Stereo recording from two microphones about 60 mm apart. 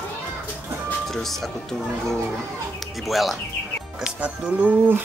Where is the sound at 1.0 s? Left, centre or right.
Centre.